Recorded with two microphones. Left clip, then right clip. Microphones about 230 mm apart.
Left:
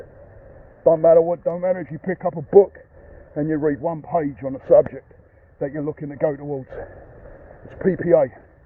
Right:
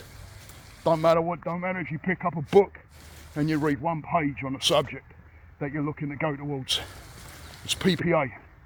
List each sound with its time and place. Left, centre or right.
0.9 s speech: right
7.8 s speech: right